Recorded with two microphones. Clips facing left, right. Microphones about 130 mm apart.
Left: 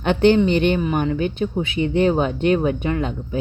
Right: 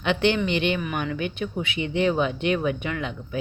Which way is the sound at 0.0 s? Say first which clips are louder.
Left 7 dB; 45° left (ahead or behind).